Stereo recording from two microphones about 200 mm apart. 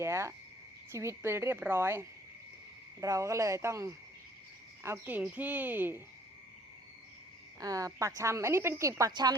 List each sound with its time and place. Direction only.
0.0 s a woman's voice: 15° right (ahead or behind)
7.6 s a woman's voice: 15° right (ahead or behind)